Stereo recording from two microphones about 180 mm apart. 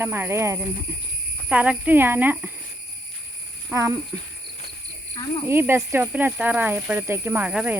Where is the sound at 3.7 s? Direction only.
15° right (ahead or behind).